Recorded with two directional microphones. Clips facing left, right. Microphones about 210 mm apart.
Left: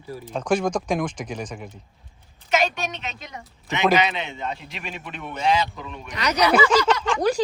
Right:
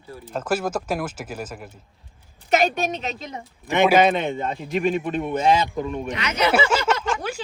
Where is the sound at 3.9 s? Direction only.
50° right (ahead or behind).